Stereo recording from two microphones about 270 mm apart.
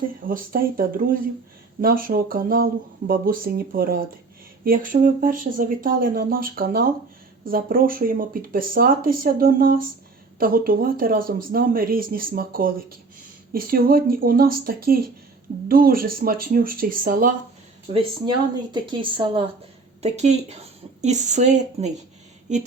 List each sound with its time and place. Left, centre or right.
0.3 s speech: right
17.9 s speech: centre